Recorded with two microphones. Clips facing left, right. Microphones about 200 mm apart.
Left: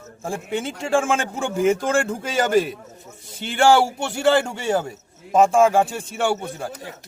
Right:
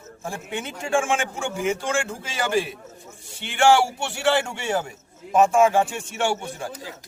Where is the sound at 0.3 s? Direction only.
30° left (ahead or behind).